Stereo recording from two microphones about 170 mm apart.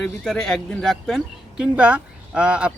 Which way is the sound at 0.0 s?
Centre (ahead or behind).